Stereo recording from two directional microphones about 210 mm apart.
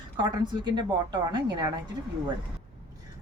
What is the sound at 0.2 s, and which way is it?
A woman's voice, 20° right (ahead or behind).